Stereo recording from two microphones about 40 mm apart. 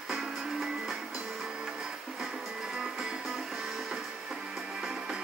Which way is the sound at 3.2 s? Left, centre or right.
Centre.